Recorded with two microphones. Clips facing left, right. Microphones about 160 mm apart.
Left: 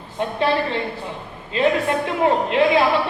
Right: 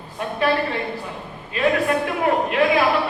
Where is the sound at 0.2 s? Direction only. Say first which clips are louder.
Left 1 dB; 25° left (ahead or behind).